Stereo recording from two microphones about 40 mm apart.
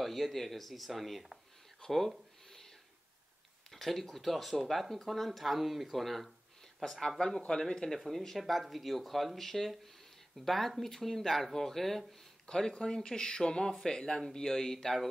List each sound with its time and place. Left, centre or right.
0.0 s speech: centre
3.7 s speech: centre
8.4 s speech: centre